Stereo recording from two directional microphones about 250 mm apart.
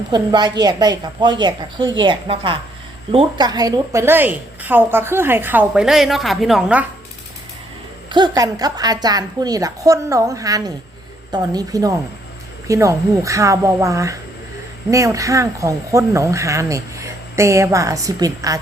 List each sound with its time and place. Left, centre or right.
0.1 s a woman's voice: centre
8.1 s speech: centre